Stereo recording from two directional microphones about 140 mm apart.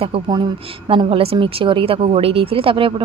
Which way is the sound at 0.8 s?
40° right (ahead or behind).